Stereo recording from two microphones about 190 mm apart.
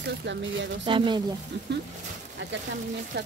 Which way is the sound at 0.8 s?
25° right (ahead or behind).